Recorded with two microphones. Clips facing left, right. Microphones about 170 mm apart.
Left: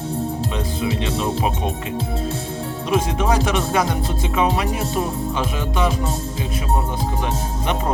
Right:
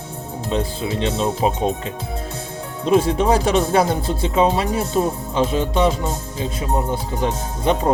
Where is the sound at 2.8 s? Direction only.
30° right (ahead or behind).